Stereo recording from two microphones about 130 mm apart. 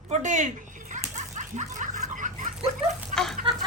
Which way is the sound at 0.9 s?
70° right (ahead or behind).